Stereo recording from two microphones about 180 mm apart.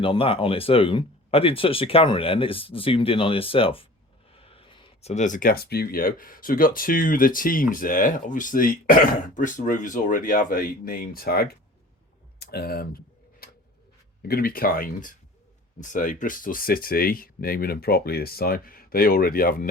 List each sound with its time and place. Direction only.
0.0 s speech: 30° left (ahead or behind); by 13.0 s 55° left (ahead or behind)
13.4 s a sound: 60° left (ahead or behind)
14.2 s speech: 55° left (ahead or behind)